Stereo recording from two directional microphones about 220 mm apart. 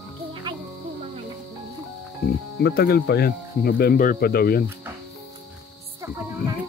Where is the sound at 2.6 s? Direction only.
45° left (ahead or behind).